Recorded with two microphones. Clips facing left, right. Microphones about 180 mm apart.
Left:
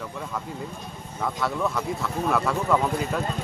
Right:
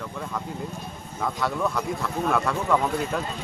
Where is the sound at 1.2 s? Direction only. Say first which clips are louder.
Even; centre (ahead or behind).